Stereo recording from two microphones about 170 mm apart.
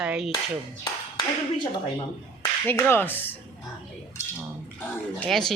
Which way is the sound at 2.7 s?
10° left (ahead or behind).